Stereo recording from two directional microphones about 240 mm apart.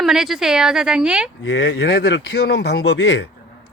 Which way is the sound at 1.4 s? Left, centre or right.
Left.